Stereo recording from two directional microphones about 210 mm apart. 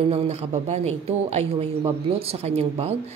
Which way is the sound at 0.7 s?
30° right (ahead or behind).